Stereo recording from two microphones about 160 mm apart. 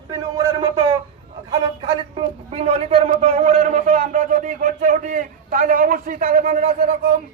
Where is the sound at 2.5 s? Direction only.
40° right (ahead or behind).